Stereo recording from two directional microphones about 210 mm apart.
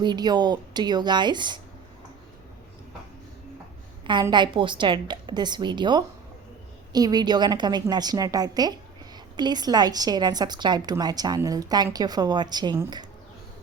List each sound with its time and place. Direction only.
0.0 s a woman's voice: 20° right (ahead or behind)
4.0 s a woman's voice: 20° right (ahead or behind)